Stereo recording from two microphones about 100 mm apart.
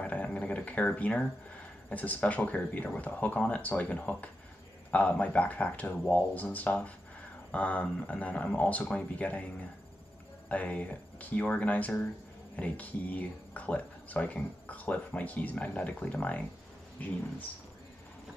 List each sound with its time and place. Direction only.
0.0 s a sound: 15° left (ahead or behind)
1.9 s speech: 15° left (ahead or behind)
10.5 s speech: 15° left (ahead or behind)